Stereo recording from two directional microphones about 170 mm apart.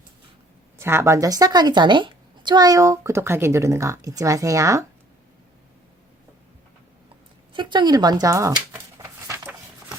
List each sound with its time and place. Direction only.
0.8 s a woman's voice: 15° right (ahead or behind)
7.5 s a woman's voice: 25° right (ahead or behind)
9.0 s a sound: 20° right (ahead or behind)